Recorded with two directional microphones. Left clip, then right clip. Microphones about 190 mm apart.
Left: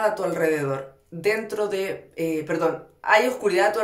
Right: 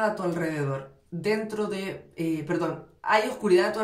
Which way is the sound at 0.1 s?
35° left (ahead or behind).